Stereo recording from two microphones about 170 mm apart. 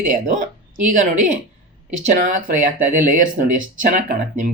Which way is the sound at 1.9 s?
45° right (ahead or behind).